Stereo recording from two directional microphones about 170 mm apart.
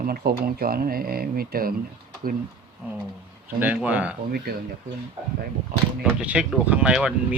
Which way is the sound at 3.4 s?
10° right (ahead or behind).